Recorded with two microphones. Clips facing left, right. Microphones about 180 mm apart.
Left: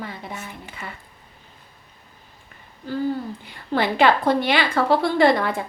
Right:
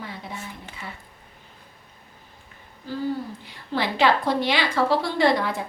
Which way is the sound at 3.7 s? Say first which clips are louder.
Left 3 dB; 55° left (ahead or behind).